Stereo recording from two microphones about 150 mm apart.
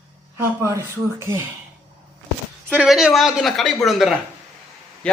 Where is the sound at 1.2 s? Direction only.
15° right (ahead or behind).